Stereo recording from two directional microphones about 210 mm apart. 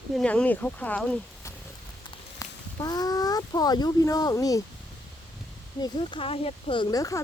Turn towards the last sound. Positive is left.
turn(degrees=15)  # may be behind; listen again after turning